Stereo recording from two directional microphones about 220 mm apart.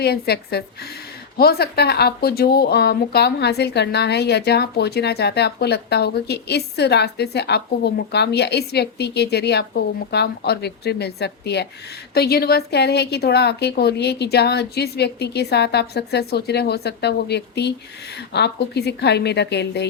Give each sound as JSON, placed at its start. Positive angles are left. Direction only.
{"t": 0.0, "sound": "speech", "side_deg": 45}